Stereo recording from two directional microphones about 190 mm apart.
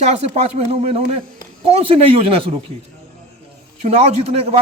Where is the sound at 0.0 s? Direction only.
35° right (ahead or behind).